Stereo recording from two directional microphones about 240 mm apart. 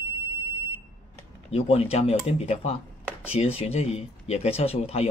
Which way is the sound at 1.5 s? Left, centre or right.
Left.